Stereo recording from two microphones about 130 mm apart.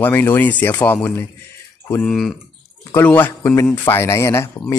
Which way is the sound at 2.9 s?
15° left (ahead or behind).